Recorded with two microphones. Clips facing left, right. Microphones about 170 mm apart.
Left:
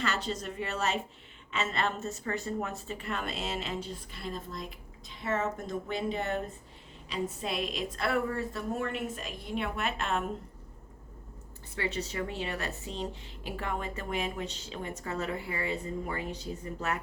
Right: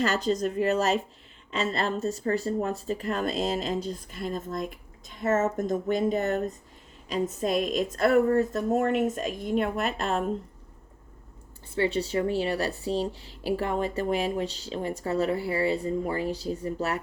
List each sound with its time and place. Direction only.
0.0 s a woman's voice: 40° right (ahead or behind)
11.7 s a woman's voice: 30° right (ahead or behind)